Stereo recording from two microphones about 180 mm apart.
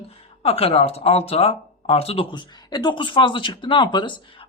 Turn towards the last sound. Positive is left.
turn(degrees=25)  # may be behind; listen again after turning